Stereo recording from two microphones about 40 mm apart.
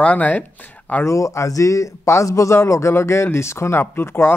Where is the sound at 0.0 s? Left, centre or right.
Left.